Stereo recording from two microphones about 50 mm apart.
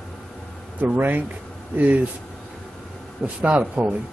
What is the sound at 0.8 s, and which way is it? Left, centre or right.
Speech, right.